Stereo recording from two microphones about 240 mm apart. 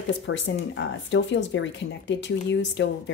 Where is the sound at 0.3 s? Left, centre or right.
Left.